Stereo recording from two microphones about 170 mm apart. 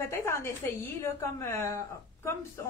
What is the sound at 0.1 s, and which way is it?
A woman's voice, 15° left (ahead or behind).